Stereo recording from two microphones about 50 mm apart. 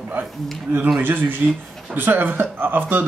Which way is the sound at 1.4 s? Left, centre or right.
Right.